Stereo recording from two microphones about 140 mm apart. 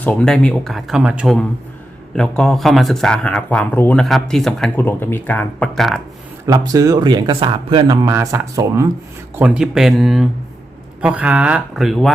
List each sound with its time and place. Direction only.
0.0 s speech: 5° left (ahead or behind)
2.1 s speech: 5° left (ahead or behind)
4.0 s speech: centre (ahead or behind)
4.8 s speech: 15° left (ahead or behind)
6.4 s speech: 25° right (ahead or behind)
8.0 s speech: 20° right (ahead or behind)
9.4 s speech: 5° right (ahead or behind)